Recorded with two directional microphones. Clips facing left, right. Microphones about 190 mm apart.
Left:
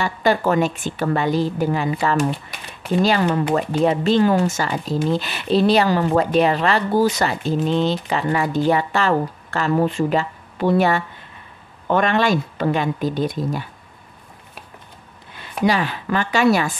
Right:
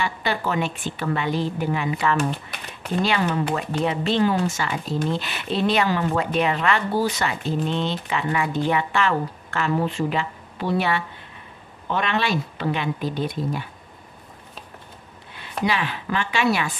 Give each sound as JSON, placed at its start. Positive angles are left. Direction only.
{"t": 0.0, "sound": "speech", "side_deg": 45}
{"t": 3.5, "sound": "speech", "side_deg": 40}
{"t": 15.6, "sound": "speech", "side_deg": 40}